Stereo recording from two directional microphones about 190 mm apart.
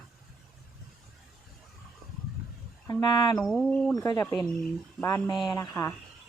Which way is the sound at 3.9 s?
15° left (ahead or behind).